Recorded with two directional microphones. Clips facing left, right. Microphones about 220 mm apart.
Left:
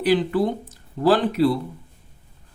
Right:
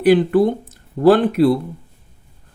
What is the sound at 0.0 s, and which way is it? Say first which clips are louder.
Speech: right 6 dB; 55° right (ahead or behind).